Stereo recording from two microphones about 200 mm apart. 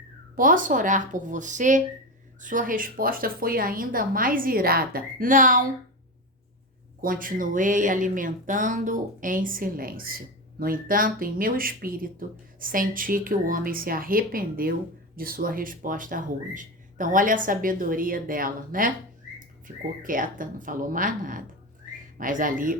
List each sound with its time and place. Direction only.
0.3 s speech: 40° right (ahead or behind)
7.0 s speech: 45° right (ahead or behind)